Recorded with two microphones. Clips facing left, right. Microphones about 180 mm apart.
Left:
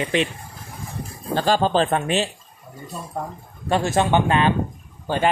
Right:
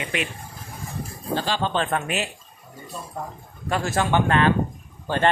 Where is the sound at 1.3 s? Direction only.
45° left (ahead or behind); by 2.2 s 30° left (ahead or behind).